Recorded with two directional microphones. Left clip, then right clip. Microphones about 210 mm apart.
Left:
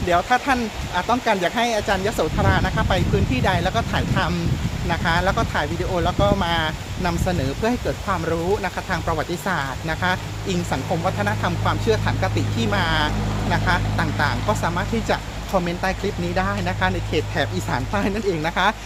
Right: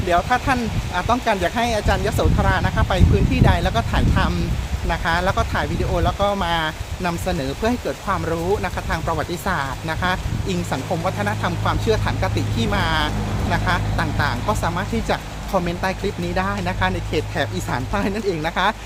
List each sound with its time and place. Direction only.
0.1 s speech: 5° right (ahead or behind)